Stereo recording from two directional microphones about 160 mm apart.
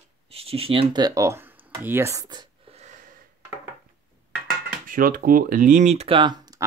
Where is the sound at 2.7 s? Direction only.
45° right (ahead or behind).